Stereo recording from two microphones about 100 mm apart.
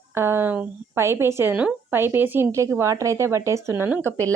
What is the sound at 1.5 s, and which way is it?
A woman's voice, 15° right (ahead or behind).